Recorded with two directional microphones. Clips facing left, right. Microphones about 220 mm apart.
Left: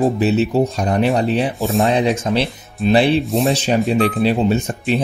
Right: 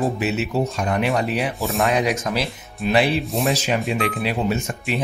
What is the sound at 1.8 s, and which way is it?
Speech, 30° left (ahead or behind).